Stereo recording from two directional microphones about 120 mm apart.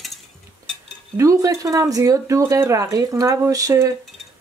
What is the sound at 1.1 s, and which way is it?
Speech, 25° right (ahead or behind).